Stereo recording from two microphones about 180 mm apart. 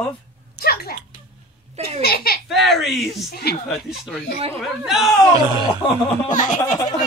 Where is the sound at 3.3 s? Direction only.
60° left (ahead or behind).